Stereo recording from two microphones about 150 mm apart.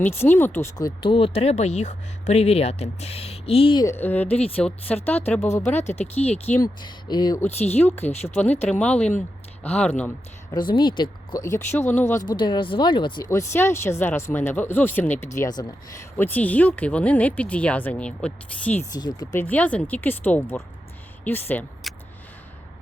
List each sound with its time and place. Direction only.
0.0 s speech: 15° left (ahead or behind)
0.8 s speech: 30° left (ahead or behind)
3.8 s speech: 15° left (ahead or behind)
4.3 s speech: 40° left (ahead or behind)
4.5 s speech: 10° left (ahead or behind)
5.6 s speech: 50° left (ahead or behind)
6.6 s speech: 30° left (ahead or behind)
7.6 s speech: 45° left (ahead or behind)
8.7 s speech: 10° left (ahead or behind)
10.8 s speech: 30° left (ahead or behind); by 12.2 s 15° left (ahead or behind)
12.4 s speech: 35° left (ahead or behind)
13.3 s speech: 15° left (ahead or behind)
16.1 s speech: 10° left (ahead or behind)
21.8 s a sound: centre (ahead or behind)